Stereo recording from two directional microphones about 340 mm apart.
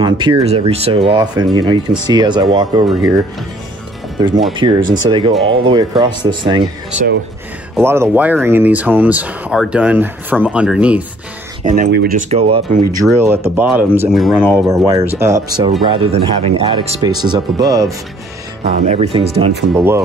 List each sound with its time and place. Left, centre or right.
0.0 s speech: centre
4.5 s speech: centre
7.7 s speech: centre
11.6 s speech: right
19.7 s speech: centre